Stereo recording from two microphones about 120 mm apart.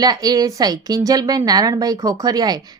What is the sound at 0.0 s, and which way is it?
A woman's voice, 35° right (ahead or behind).